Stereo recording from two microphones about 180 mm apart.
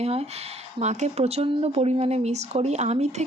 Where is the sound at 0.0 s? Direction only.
35° right (ahead or behind).